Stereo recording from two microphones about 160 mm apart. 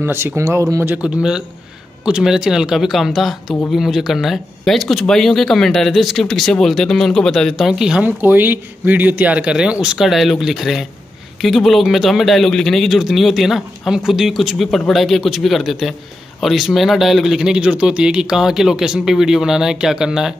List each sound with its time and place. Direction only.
0.0 s speech: 15° right (ahead or behind)